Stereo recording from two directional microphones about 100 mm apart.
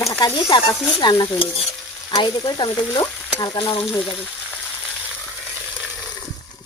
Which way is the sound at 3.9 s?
15° left (ahead or behind).